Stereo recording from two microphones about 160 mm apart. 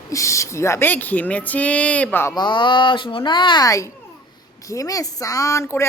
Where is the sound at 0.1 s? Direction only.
20° left (ahead or behind).